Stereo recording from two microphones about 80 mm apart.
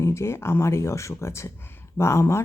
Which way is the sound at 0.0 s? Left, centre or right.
Left.